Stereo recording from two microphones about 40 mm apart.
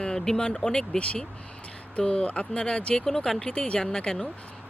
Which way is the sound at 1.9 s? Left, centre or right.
Left.